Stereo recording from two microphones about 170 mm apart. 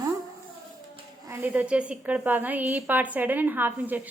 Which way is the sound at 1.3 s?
10° right (ahead or behind).